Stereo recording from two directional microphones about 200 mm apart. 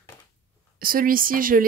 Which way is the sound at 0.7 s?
45° right (ahead or behind).